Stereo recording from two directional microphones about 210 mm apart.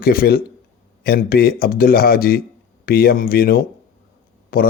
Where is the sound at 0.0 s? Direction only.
45° left (ahead or behind).